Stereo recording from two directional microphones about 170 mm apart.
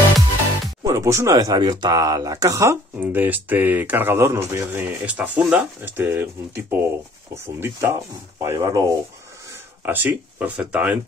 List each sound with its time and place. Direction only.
0.8 s speech: 20° right (ahead or behind)